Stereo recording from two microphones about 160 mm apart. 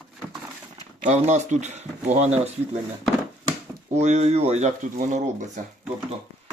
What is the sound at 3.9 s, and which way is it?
Speech, 45° right (ahead or behind).